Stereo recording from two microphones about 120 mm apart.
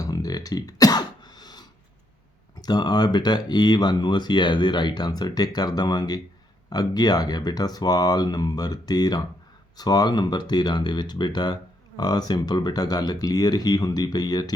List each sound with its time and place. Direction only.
0.0 s throat clearing: 30° left (ahead or behind)
2.6 s speech: 35° left (ahead or behind)